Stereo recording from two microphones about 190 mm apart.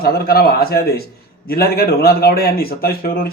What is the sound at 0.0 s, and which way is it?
Speech, 55° left (ahead or behind).